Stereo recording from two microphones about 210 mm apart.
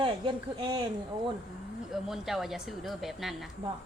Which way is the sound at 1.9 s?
Centre (ahead or behind).